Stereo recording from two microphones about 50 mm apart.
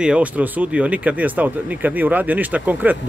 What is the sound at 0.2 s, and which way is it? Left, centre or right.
Speech, right.